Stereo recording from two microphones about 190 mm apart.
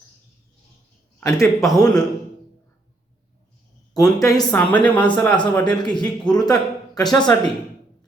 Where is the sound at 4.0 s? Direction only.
20° left (ahead or behind).